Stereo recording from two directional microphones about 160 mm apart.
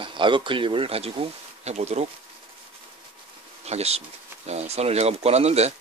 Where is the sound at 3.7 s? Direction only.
40° right (ahead or behind).